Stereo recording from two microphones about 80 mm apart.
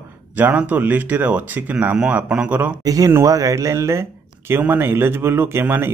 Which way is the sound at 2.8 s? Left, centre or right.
Right.